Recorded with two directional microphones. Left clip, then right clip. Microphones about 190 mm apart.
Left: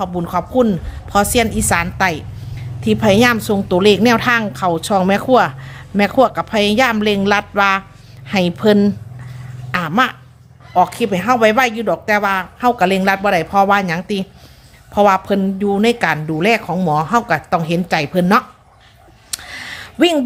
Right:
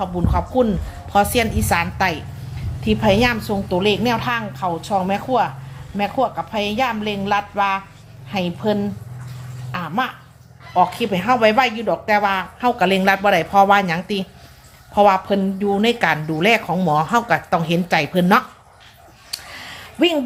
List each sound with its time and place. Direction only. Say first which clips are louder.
0.0 s a woman's voice: left 3 dB; 30° left (ahead or behind); by 10.2 s 50° left (ahead or behind)
10.8 s speech: left 3 dB; 30° left (ahead or behind)
19.3 s a sound: left 4 dB; 40° left (ahead or behind)